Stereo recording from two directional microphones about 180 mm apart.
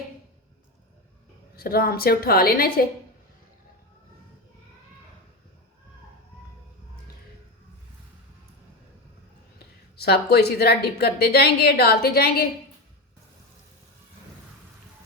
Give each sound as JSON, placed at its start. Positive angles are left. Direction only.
{"t": 1.5, "sound": "a woman's voice", "side_deg": 55}
{"t": 10.0, "sound": "a woman's voice", "side_deg": 60}